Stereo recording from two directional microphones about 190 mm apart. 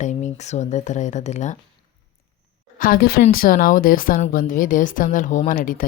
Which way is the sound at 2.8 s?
50° left (ahead or behind).